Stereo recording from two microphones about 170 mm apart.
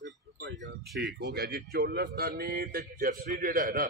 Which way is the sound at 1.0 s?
65° right (ahead or behind).